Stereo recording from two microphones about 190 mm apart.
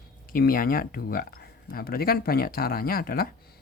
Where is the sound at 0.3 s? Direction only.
50° left (ahead or behind).